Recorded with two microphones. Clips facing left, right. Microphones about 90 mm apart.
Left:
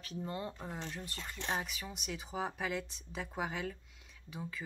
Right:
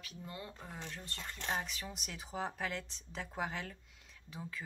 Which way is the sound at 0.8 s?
15° left (ahead or behind).